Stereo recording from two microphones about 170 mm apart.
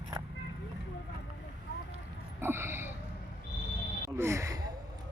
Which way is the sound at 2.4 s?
15° right (ahead or behind).